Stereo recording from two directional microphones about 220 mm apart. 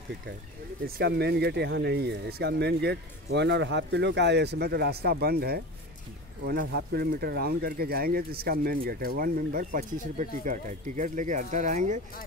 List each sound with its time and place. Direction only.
0.8 s speech: 45° right (ahead or behind)